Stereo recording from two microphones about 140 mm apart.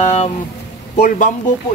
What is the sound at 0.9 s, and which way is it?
Speech, 65° left (ahead or behind).